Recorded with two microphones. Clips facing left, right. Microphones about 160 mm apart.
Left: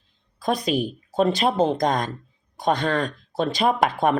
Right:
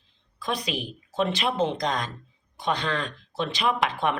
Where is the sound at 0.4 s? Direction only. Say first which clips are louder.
Left 7 dB; 45° left (ahead or behind).